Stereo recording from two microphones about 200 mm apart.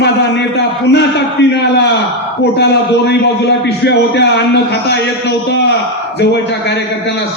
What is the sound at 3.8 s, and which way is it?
A man's voice, 60° left (ahead or behind).